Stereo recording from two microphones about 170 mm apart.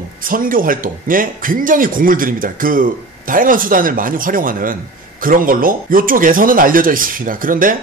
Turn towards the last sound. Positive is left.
turn(degrees=-55)  # may be behind; listen again after turning